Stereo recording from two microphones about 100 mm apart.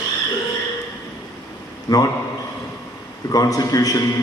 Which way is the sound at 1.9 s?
45° left (ahead or behind).